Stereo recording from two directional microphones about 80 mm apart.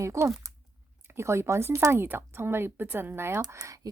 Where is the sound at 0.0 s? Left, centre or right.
Right.